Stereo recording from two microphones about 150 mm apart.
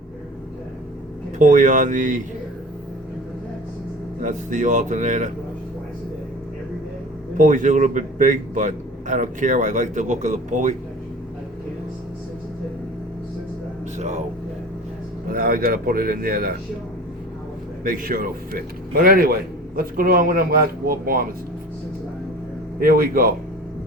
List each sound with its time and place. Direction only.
1.4 s a man's voice: 55° right (ahead or behind)
4.2 s a man's voice: 55° right (ahead or behind)
7.3 s a man's voice: 60° right (ahead or behind)
14.0 s speech: 50° right (ahead or behind)
15.3 s a man's voice: 75° right (ahead or behind)
17.8 s a man's voice: 70° right (ahead or behind)
22.8 s a man's voice: 75° right (ahead or behind)